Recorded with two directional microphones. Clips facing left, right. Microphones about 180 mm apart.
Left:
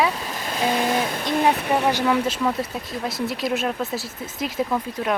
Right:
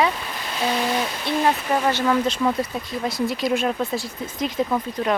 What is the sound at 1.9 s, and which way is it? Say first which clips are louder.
Speech: right 2 dB; 10° left (ahead or behind).